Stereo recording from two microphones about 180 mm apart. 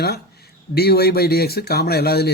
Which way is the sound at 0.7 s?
60° left (ahead or behind).